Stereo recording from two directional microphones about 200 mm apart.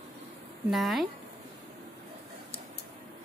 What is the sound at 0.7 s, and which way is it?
Speech, centre (ahead or behind).